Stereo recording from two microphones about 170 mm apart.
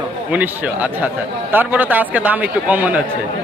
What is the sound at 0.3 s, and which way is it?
A man's voice, 10° right (ahead or behind).